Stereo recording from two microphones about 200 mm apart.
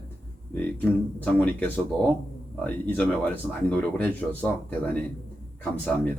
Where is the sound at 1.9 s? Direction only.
20° right (ahead or behind).